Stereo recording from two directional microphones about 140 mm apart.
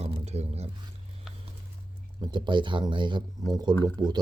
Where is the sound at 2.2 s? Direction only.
35° right (ahead or behind).